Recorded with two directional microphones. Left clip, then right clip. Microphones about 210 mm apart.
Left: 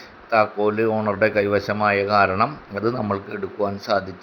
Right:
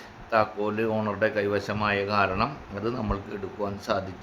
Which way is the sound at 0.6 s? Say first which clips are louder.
Left 7 dB; 20° left (ahead or behind).